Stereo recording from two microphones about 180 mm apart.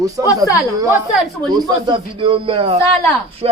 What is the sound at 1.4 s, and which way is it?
Speech, 25° right (ahead or behind).